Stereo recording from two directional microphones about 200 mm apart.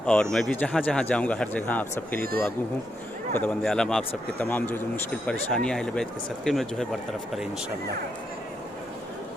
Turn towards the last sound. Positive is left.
turn(degrees=0)  # may be behind; listen again after turning